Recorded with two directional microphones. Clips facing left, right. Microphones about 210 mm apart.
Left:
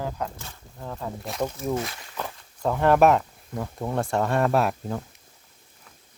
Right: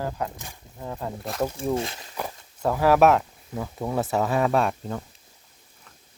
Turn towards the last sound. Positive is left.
turn(degrees=5)  # may be behind; listen again after turning